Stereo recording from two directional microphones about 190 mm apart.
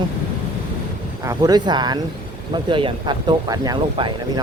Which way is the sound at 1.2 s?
20° right (ahead or behind).